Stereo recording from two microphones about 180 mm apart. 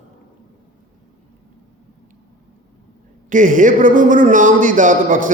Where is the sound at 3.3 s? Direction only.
45° right (ahead or behind).